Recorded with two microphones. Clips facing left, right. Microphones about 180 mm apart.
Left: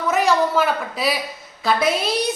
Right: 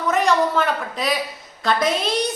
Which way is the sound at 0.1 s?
5° left (ahead or behind).